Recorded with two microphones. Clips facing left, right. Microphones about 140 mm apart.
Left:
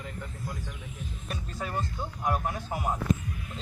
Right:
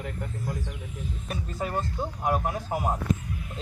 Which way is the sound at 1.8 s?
35° right (ahead or behind).